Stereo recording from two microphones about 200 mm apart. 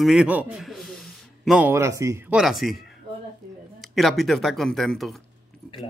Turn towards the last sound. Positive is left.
turn(degrees=0)  # may be behind; listen again after turning